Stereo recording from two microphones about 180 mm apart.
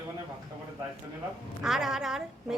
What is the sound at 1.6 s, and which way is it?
Speech, centre (ahead or behind).